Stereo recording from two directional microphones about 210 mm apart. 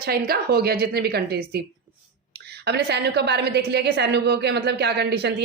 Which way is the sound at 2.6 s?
50° right (ahead or behind).